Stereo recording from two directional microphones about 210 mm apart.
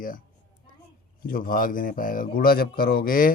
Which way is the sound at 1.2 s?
45° left (ahead or behind).